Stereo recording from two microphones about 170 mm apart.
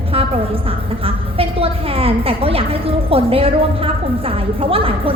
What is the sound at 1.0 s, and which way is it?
A woman's voice, 35° right (ahead or behind).